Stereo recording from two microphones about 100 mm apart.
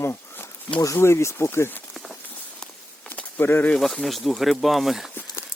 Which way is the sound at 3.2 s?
20° left (ahead or behind).